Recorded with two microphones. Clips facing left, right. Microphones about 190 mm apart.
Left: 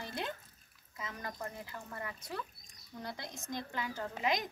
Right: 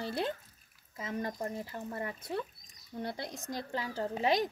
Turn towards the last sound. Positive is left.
turn(degrees=-30)  # may be behind; listen again after turning